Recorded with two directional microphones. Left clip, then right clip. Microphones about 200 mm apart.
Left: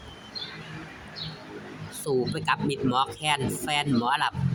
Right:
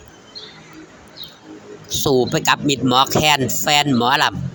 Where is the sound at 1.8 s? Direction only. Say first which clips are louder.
Right 11 dB; 25° right (ahead or behind).